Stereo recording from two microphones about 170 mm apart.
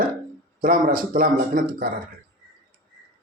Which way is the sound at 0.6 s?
55° right (ahead or behind).